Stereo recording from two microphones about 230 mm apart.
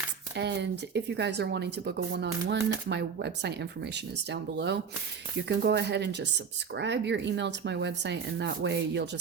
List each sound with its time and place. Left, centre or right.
0.3 s speech: right